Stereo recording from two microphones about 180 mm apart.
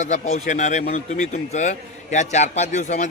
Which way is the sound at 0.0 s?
40° left (ahead or behind).